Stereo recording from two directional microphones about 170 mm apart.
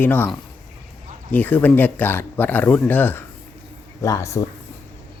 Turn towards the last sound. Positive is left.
turn(degrees=20)  # may be behind; listen again after turning